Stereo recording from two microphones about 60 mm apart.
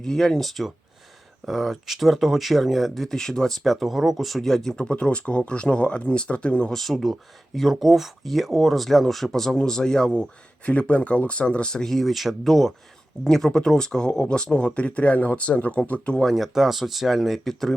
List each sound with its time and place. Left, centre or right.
0.0 s speech: centre
6.7 s speech: centre
16.2 s speech: centre